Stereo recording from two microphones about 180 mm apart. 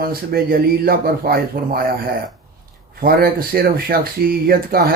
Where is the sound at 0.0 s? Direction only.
55° right (ahead or behind).